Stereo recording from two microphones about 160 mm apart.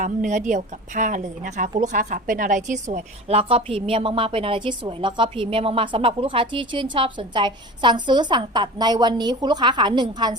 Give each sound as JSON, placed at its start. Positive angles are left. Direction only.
{"t": 0.3, "sound": "a woman's voice", "side_deg": -50}